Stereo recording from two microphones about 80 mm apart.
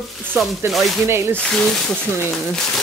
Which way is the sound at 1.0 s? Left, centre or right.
Right.